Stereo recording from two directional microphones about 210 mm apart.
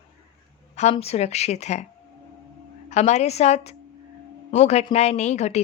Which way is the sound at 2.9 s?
35° left (ahead or behind).